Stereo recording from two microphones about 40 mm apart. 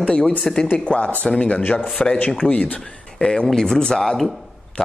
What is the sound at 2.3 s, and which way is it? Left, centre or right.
A man's voice, left.